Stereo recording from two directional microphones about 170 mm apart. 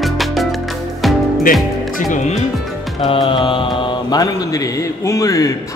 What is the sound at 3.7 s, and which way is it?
A man's voice, 25° left (ahead or behind).